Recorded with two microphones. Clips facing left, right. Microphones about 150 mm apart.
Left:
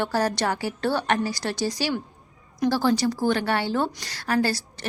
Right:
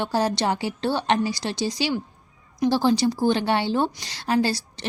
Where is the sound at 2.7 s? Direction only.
20° right (ahead or behind).